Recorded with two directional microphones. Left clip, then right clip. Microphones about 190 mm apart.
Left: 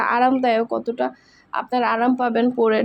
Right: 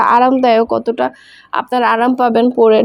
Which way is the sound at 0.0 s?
25° right (ahead or behind).